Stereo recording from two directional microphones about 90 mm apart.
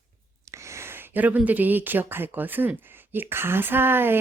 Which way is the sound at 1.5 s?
20° right (ahead or behind).